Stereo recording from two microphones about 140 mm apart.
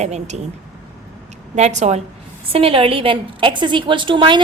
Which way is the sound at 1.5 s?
55° right (ahead or behind).